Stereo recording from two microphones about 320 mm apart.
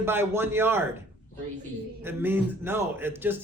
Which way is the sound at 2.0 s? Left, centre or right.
Centre.